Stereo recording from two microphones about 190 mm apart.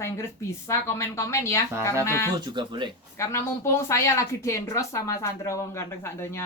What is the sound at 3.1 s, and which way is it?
Speech, 15° left (ahead or behind).